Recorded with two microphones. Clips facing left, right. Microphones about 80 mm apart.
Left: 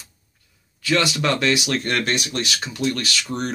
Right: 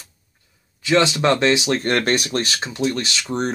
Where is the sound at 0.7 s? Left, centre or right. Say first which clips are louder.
Right 4 dB; right.